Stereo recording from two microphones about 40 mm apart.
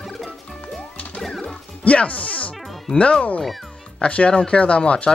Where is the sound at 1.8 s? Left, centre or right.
Left.